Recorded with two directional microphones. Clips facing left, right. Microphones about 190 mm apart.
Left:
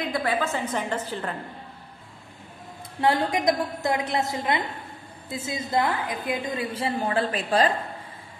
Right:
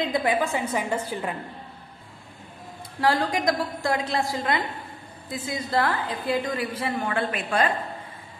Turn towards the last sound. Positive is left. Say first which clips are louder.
# left 2 dB
turn(degrees=35)  # may be behind; listen again after turning